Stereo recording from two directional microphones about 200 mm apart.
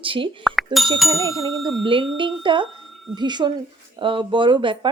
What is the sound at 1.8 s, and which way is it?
A woman's voice, 25° right (ahead or behind).